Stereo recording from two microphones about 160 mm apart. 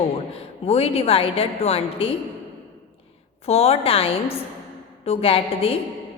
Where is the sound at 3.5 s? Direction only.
40° left (ahead or behind).